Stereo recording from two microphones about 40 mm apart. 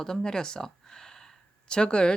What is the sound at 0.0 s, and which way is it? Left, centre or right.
Speech, centre.